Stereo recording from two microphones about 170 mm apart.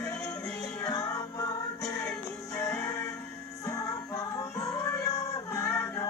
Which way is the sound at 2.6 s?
20° left (ahead or behind).